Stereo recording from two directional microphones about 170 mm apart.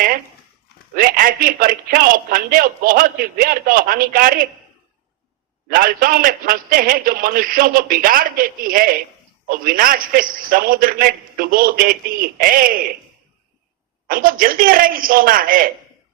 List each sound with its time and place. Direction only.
0.9 s speech: 55° right (ahead or behind)
5.6 s speech: 55° right (ahead or behind)
14.1 s speech: 55° right (ahead or behind)